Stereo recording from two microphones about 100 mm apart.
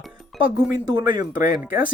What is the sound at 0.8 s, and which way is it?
Speech, 45° right (ahead or behind).